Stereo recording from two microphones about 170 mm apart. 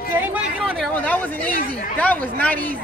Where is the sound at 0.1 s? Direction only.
10° right (ahead or behind).